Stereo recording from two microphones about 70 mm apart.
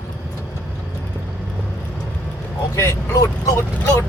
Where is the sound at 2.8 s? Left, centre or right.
Left.